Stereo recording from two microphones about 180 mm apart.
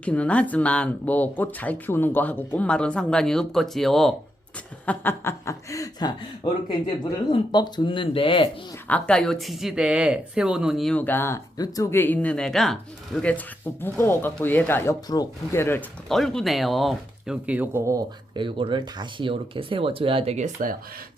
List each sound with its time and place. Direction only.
0.0 s speech: 5° left (ahead or behind)
4.9 s speech: 15° left (ahead or behind); by 8.4 s 30° left (ahead or behind)
8.9 s speech: 5° left (ahead or behind)
16.0 s speech: centre (ahead or behind); by 20.7 s 45° right (ahead or behind)